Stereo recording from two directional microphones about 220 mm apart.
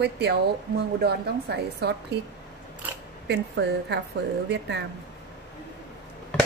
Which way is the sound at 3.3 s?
50° right (ahead or behind).